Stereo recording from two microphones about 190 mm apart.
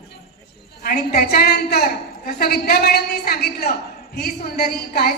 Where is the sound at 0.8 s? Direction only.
50° left (ahead or behind).